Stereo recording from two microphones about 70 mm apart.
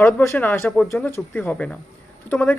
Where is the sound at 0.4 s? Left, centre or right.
Left.